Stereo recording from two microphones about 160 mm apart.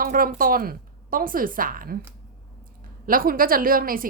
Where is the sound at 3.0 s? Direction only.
65° right (ahead or behind).